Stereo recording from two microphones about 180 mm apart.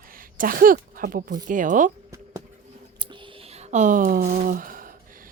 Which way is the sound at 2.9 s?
25° right (ahead or behind).